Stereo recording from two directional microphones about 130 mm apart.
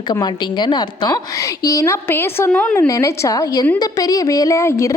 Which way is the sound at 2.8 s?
25° left (ahead or behind).